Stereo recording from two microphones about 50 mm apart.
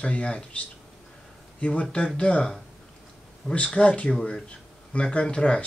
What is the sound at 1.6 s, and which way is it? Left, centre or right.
Speech, left.